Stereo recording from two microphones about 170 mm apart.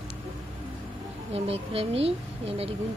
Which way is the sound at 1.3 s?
35° right (ahead or behind).